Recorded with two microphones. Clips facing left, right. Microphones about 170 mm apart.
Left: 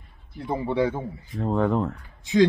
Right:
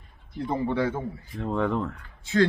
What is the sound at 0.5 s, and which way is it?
Speech, 15° left (ahead or behind).